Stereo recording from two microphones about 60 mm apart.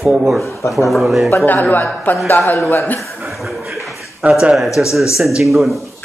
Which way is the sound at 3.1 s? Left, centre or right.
Centre.